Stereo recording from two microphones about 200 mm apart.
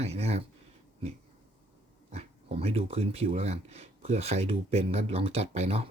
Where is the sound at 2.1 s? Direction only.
30° right (ahead or behind).